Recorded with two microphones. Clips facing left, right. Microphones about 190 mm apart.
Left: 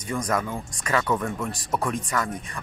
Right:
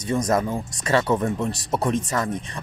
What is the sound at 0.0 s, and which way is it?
Speech, 25° right (ahead or behind).